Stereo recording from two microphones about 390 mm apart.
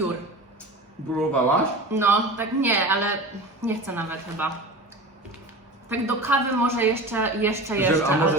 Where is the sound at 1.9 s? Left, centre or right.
Centre.